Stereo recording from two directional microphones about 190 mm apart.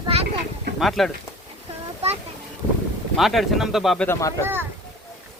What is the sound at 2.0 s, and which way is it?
Boat, 30° right (ahead or behind).